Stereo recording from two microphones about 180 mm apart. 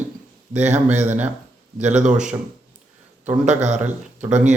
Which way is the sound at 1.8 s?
40° right (ahead or behind).